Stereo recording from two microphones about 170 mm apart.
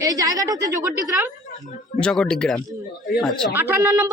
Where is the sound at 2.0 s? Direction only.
5° left (ahead or behind).